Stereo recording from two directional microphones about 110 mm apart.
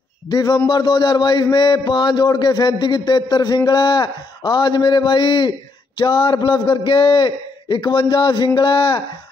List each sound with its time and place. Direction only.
0.3 s a man's voice: 40° left (ahead or behind)